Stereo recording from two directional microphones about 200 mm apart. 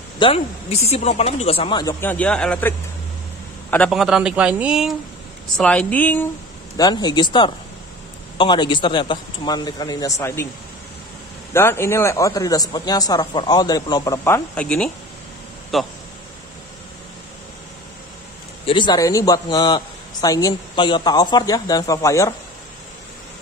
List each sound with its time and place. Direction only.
0.2 s a man's voice: 30° left (ahead or behind); by 2.7 s 5° left (ahead or behind)
3.7 s a man's voice: centre (ahead or behind)
6.8 s a man's voice: 20° left (ahead or behind)
11.5 s a man's voice: 10° left (ahead or behind)
18.7 s a man's voice: 20° left (ahead or behind)